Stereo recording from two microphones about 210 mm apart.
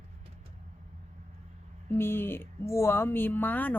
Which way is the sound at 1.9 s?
10° left (ahead or behind).